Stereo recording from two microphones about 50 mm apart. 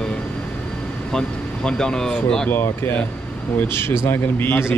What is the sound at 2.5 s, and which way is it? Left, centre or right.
Speech, left.